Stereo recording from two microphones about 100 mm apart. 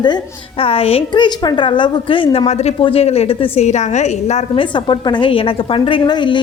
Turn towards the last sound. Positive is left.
turn(degrees=50)  # may be behind; listen again after turning